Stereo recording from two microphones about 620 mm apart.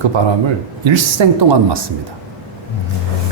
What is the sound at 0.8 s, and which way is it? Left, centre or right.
Speech, right.